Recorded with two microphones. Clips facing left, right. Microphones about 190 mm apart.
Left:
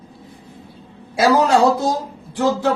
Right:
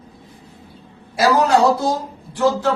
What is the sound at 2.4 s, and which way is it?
Speech, 15° left (ahead or behind).